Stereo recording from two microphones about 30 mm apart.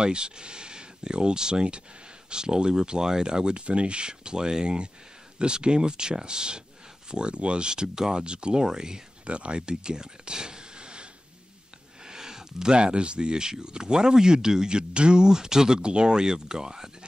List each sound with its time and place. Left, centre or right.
0.0 s speech: right
3.6 s speech: right
8.5 s speech: right
9.2 s speech: right
12.1 s a sound: centre
12.7 s speech: right